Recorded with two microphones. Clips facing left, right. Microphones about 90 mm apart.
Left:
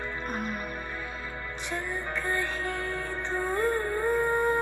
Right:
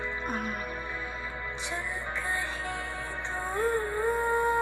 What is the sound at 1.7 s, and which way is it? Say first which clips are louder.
Music: left 4 dB; 55° left (ahead or behind).